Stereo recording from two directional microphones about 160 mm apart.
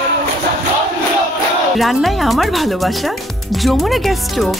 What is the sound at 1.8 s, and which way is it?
Speech, centre (ahead or behind).